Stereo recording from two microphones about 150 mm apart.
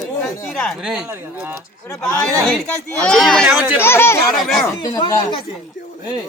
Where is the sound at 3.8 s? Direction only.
15° left (ahead or behind).